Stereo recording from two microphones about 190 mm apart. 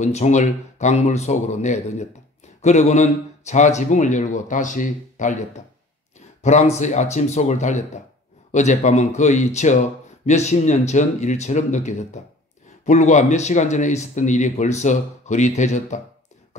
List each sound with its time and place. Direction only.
0.0 s speech: 35° left (ahead or behind)
6.4 s speech: 40° left (ahead or behind)